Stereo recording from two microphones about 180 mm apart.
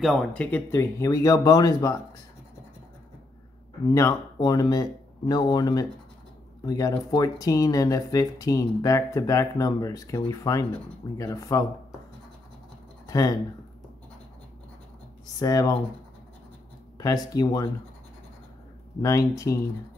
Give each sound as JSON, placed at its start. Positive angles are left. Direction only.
{"t": 0.0, "sound": "speech", "side_deg": 0}
{"t": 3.8, "sound": "speech", "side_deg": 20}
{"t": 13.0, "sound": "speech", "side_deg": 20}
{"t": 15.3, "sound": "speech", "side_deg": 20}
{"t": 17.0, "sound": "speech", "side_deg": 20}
{"t": 18.9, "sound": "speech", "side_deg": 20}